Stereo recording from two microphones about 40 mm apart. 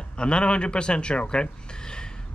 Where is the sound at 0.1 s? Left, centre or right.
Left.